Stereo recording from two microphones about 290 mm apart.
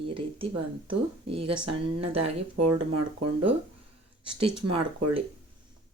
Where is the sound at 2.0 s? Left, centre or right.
Right.